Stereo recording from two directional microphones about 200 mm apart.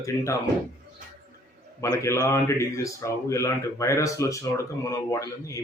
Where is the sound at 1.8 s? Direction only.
15° left (ahead or behind).